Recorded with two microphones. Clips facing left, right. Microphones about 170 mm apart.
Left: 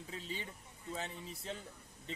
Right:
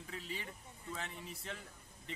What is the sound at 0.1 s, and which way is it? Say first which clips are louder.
A man's voice: left 1 dB; 30° left (ahead or behind).